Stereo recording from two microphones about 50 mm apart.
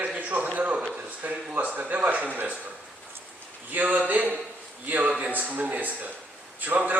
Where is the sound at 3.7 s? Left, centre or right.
Right.